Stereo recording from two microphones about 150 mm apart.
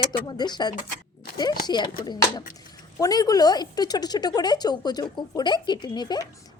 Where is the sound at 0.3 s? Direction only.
30° left (ahead or behind).